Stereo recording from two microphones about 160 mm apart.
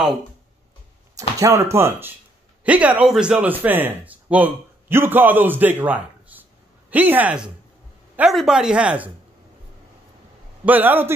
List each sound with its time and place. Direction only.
1.4 s speech: 20° right (ahead or behind)
10.6 s speech: 10° right (ahead or behind)